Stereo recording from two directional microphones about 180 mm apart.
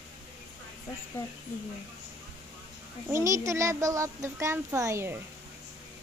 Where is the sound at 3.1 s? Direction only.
15° right (ahead or behind).